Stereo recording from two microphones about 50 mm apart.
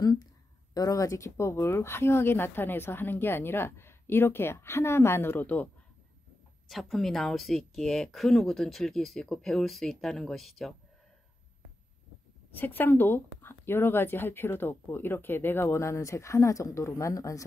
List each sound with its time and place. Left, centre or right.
0.9 s speech: left
6.7 s speech: centre
12.4 s speech: left